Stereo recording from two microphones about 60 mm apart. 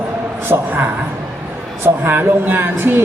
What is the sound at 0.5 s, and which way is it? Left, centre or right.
Speech, right.